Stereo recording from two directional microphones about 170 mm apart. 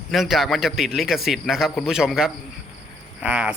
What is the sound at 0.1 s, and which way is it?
A man's voice, centre (ahead or behind).